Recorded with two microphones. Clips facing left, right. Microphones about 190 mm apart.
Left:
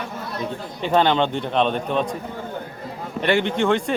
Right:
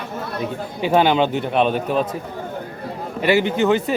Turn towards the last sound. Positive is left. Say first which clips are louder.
# right 2 dB
turn(degrees=-5)  # may be behind; listen again after turning